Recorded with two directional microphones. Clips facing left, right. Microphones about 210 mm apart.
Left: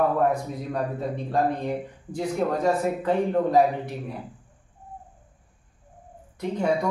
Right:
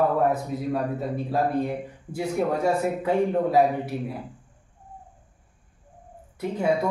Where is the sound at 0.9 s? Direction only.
5° right (ahead or behind).